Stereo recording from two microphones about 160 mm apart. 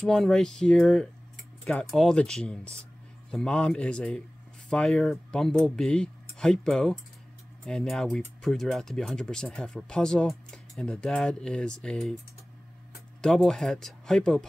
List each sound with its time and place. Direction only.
0.0 s speech: centre (ahead or behind)
13.2 s speech: 5° left (ahead or behind)